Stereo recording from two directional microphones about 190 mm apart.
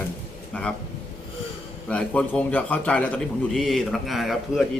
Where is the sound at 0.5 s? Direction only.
5° left (ahead or behind).